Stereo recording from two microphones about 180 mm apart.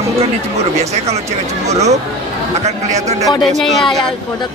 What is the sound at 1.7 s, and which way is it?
Speech, 40° right (ahead or behind).